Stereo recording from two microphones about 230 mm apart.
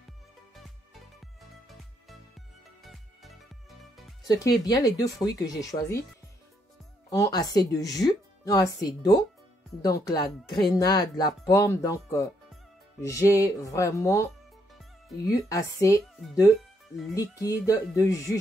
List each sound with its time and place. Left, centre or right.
1.2 s music: centre
4.3 s speech: centre
7.1 s speech: centre
17.1 s speech: centre